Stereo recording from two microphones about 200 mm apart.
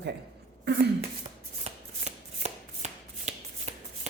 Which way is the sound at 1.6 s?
35° right (ahead or behind).